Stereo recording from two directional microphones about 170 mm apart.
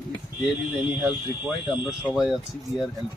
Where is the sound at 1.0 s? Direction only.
5° right (ahead or behind).